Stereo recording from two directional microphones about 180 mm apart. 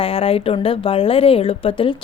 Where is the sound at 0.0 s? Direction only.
30° left (ahead or behind).